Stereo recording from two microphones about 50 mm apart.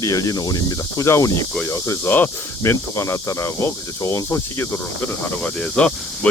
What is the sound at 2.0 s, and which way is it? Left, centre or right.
Speech, left.